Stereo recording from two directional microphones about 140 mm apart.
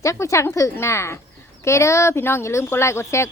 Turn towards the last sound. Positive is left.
turn(degrees=20)  # may be behind; listen again after turning